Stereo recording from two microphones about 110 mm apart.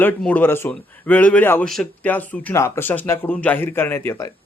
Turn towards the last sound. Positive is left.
turn(degrees=25)  # may be behind; listen again after turning